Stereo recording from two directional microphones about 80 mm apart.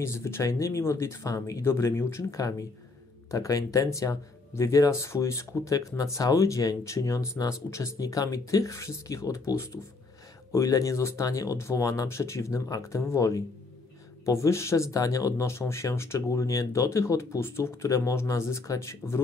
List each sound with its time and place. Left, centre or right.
0.0 s speech: left
3.3 s speech: left